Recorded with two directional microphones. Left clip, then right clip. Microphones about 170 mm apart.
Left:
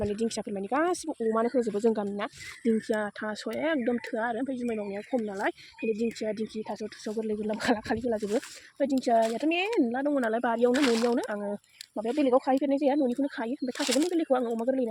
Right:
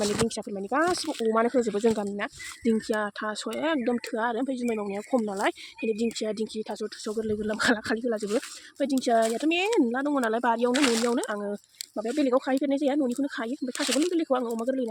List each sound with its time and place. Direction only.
0.0 s speech: centre (ahead or behind)
1.3 s speech: 10° right (ahead or behind)
1.8 s speech: centre (ahead or behind)
2.6 s speech: 10° right (ahead or behind)
10.8 s speech: 45° right (ahead or behind)
11.3 s speech: 5° right (ahead or behind)
13.8 s speech: 25° right (ahead or behind)
14.1 s speech: centre (ahead or behind)